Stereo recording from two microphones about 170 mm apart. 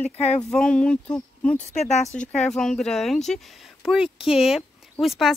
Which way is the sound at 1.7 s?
40° left (ahead or behind).